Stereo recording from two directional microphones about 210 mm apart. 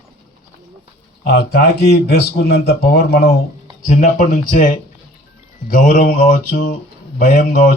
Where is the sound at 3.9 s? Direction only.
35° left (ahead or behind).